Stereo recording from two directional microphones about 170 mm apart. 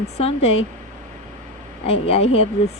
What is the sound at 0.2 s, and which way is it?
Speech, 35° left (ahead or behind).